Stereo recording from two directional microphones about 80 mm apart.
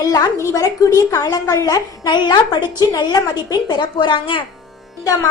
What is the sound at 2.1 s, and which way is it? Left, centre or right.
A woman's voice, left.